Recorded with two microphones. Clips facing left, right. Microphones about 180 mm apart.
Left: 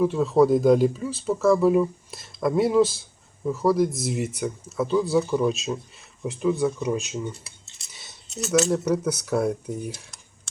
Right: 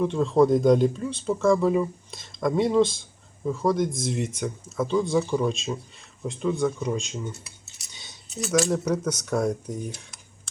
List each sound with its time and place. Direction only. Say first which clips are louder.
0.0 s speech: left 1 dB; 5° left (ahead or behind)
7.9 s a sound: even; centre (ahead or behind)
8.6 s speech: left 2 dB; 5° left (ahead or behind)